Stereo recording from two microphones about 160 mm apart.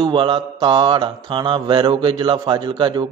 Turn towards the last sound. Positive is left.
turn(degrees=-25)  # may be behind; listen again after turning